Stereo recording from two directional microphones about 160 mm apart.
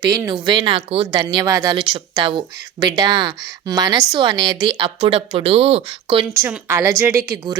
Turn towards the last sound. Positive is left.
turn(degrees=-15)  # may be behind; listen again after turning